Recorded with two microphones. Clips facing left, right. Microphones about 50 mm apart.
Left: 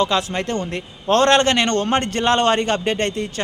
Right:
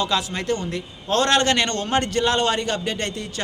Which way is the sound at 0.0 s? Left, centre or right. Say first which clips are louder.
Left 4 dB; left.